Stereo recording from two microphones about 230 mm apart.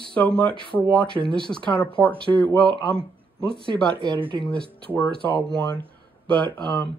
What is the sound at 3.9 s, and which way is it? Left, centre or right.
Speech, right.